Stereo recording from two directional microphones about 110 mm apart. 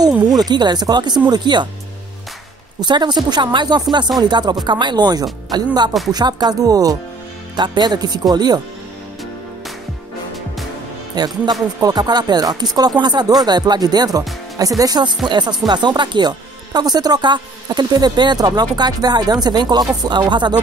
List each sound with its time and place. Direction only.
0.3 s speech: 40° right (ahead or behind)
2.8 s speech: 40° right (ahead or behind)
7.5 s speech: 45° right (ahead or behind)
11.1 s speech: 40° right (ahead or behind)